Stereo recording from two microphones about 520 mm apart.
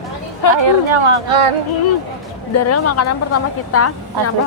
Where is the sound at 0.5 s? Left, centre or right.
Right.